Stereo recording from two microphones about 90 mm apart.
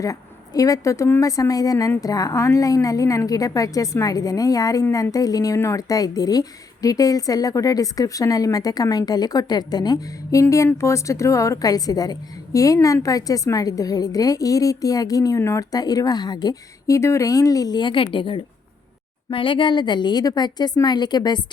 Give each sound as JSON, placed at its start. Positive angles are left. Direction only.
{"t": 0.0, "sound": "a woman's voice", "side_deg": 40}